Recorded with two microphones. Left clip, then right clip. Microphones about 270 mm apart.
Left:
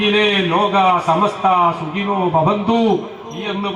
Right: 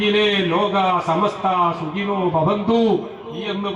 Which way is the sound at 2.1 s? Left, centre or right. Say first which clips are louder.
Left 3 dB; right.